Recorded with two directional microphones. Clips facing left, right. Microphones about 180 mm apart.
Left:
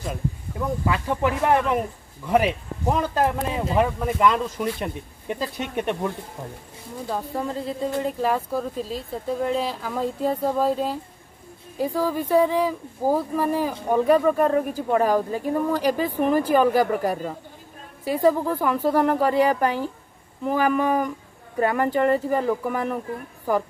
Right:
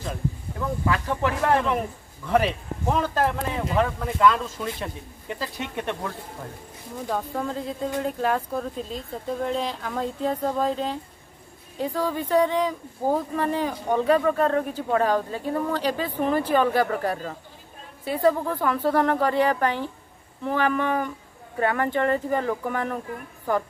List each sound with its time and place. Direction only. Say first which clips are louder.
0.6 s speech: left 1 dB; 15° left (ahead or behind)
7.1 s speech: even; 5° left (ahead or behind)